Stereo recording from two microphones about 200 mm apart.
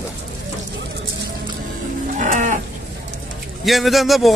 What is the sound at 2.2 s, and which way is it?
Livestock, 40° right (ahead or behind).